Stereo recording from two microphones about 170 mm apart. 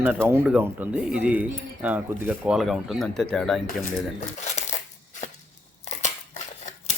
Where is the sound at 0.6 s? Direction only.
10° right (ahead or behind).